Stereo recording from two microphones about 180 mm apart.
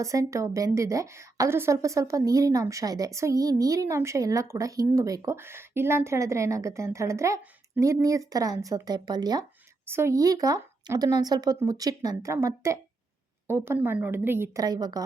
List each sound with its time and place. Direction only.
0.0 s a woman's voice: 20° right (ahead or behind)